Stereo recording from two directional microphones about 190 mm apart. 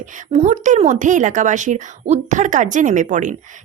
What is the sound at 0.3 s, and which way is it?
A woman's voice, 40° right (ahead or behind).